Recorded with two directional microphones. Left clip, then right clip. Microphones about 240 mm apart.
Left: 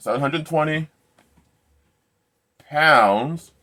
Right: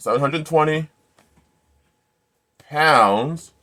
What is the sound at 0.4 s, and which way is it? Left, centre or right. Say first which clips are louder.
Speech: right 5 dB; right.